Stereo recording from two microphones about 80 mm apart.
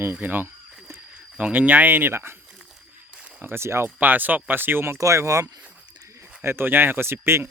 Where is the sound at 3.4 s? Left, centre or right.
Right.